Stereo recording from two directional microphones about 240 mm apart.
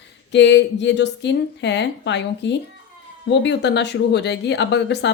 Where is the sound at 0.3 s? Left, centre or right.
Left.